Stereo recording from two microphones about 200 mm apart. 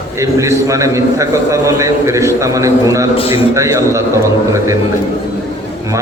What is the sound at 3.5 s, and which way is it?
Speech, 15° right (ahead or behind).